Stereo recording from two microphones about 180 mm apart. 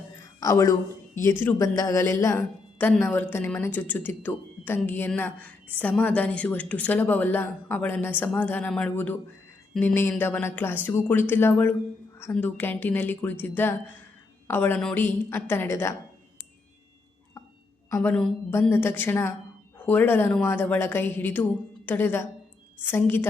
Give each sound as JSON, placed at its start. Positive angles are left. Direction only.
{"t": 0.3, "sound": "a woman's voice", "side_deg": 20}
{"t": 17.9, "sound": "a woman's voice", "side_deg": 10}